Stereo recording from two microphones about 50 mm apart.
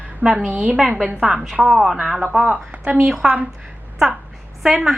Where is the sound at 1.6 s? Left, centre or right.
Centre.